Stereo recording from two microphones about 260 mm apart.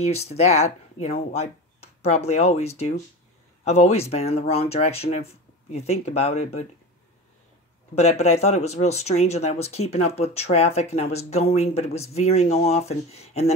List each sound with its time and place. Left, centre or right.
0.0 s speech: left
7.9 s speech: left